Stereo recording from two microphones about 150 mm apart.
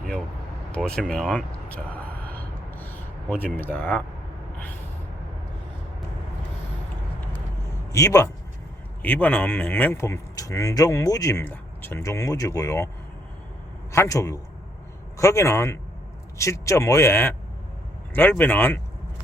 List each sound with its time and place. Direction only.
0.8 s speech: 5° left (ahead or behind)
1.7 s a sound: 10° left (ahead or behind)
7.9 s speech: 20° left (ahead or behind)
9.0 s speech: 10° left (ahead or behind)
13.9 s speech: 20° left (ahead or behind)